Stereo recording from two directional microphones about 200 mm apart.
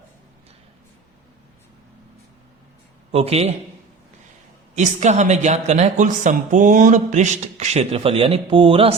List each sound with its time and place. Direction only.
3.1 s a woman's voice: 30° right (ahead or behind)
4.7 s a woman's voice: 35° right (ahead or behind)